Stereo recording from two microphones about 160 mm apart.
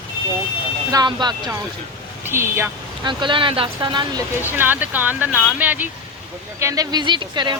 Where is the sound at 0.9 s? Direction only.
25° right (ahead or behind).